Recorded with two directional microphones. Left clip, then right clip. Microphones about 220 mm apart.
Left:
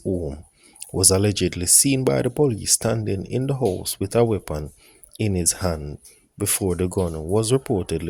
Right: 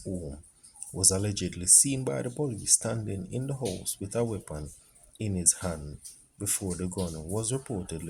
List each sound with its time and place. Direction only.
0.8 s speech: 45° left (ahead or behind)